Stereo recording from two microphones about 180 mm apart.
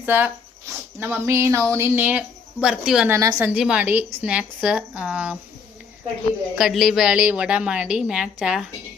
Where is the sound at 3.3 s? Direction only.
5° right (ahead or behind).